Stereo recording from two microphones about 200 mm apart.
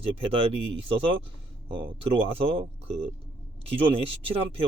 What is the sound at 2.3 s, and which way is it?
Speech, 25° right (ahead or behind).